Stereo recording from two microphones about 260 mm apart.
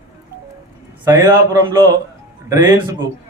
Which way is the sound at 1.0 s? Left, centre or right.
Centre.